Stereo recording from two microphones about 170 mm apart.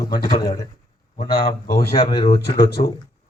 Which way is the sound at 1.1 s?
60° left (ahead or behind).